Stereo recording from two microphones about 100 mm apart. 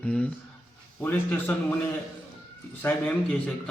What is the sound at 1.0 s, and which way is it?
Speech, 15° left (ahead or behind).